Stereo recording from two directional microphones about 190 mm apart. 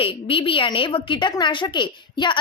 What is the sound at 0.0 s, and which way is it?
A woman's voice, 30° left (ahead or behind).